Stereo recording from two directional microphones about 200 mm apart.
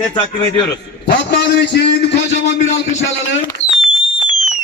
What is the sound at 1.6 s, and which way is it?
Speech, 55° left (ahead or behind).